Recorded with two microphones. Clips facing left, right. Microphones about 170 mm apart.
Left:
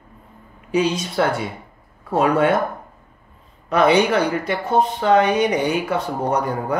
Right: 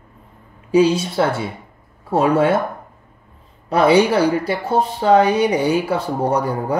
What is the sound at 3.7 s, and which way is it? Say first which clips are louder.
Speech: right 2 dB; 30° right (ahead or behind).